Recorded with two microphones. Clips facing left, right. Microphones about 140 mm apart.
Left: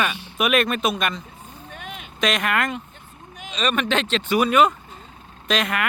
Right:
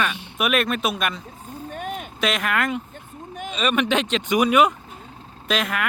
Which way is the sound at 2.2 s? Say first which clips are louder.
Left 1 dB; centre (ahead or behind).